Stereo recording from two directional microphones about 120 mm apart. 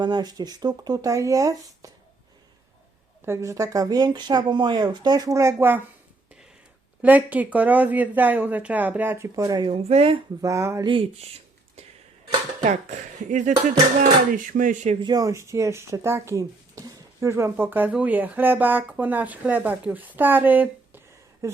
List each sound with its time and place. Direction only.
0.0 s speech: 35° right (ahead or behind)
3.2 s speech: 20° right (ahead or behind)
7.0 s speech: 15° right (ahead or behind); by 9.6 s 30° right (ahead or behind)
9.6 s speech: 55° right (ahead or behind)
10.4 s speech: 25° right (ahead or behind)
10.8 s speech: 45° right (ahead or behind)
12.6 s speech: 80° right
15.0 s speech: 30° right (ahead or behind); by 21.0 s 15° right (ahead or behind)
21.4 s a sound: 25° right (ahead or behind)